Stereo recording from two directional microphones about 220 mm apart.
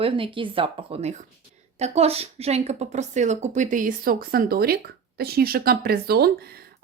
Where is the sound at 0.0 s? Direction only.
25° right (ahead or behind).